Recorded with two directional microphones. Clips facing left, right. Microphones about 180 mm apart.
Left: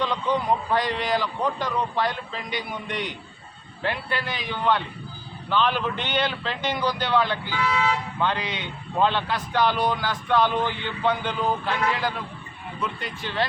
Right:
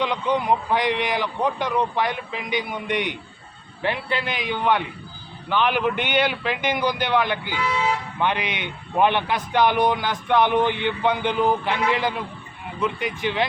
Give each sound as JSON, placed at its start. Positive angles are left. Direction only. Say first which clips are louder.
{"t": 0.0, "sound": "a man's voice", "louder": "right 2 dB", "side_deg": -15}